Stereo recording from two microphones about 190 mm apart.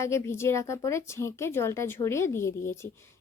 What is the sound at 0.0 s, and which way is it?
A woman's voice, 15° left (ahead or behind).